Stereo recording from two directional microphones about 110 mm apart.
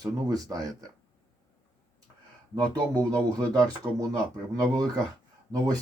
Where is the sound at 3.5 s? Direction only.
35° right (ahead or behind).